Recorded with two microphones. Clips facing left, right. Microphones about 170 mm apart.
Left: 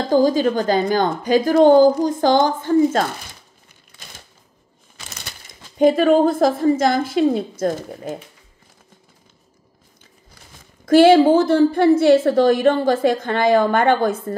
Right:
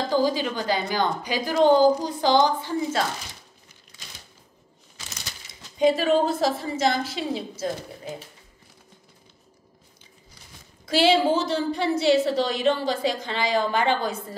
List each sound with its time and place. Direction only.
0.1 s a woman's voice: 45° left (ahead or behind)
3.9 s a sound: 55° left (ahead or behind)
4.9 s speech: 55° left (ahead or behind)
10.9 s a woman's voice: 50° left (ahead or behind)